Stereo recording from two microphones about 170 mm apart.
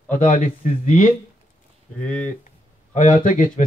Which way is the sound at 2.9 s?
50° left (ahead or behind).